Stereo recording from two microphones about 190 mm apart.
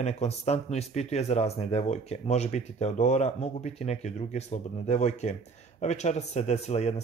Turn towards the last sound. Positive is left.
turn(degrees=35)  # may be behind; listen again after turning